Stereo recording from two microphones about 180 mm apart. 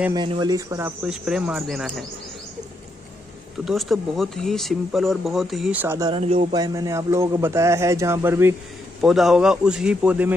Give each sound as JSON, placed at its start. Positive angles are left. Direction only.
{"t": 0.1, "sound": "a man's voice", "side_deg": -25}
{"t": 3.6, "sound": "speech", "side_deg": 0}
{"t": 5.9, "sound": "speech", "side_deg": -25}
{"t": 6.5, "sound": "a man's voice", "side_deg": -20}
{"t": 9.0, "sound": "speech", "side_deg": 0}